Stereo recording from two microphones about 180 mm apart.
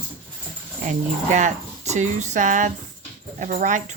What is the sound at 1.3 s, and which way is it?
A woman's voice, 40° right (ahead or behind).